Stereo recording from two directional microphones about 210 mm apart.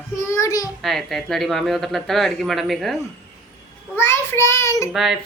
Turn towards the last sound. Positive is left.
turn(degrees=0)  # may be behind; listen again after turning